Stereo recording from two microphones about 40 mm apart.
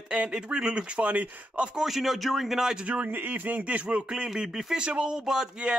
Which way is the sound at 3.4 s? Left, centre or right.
Right.